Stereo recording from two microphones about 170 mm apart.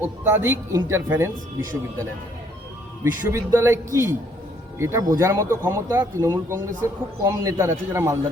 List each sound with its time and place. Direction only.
0.0 s speech: 15° right (ahead or behind)
3.0 s speech: 15° right (ahead or behind)